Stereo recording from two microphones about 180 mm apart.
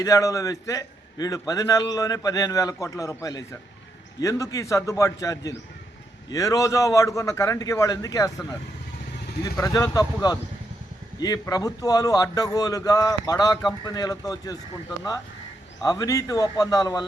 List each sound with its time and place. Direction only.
0.0 s a man's voice: 20° left (ahead or behind)
9.4 s a man's voice: 20° left (ahead or behind)
15.8 s a man's voice: 20° left (ahead or behind)